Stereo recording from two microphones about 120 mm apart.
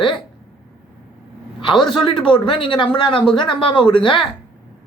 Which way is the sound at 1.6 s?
40° left (ahead or behind).